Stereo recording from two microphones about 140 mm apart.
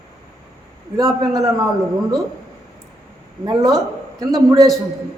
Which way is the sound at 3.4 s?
25° right (ahead or behind).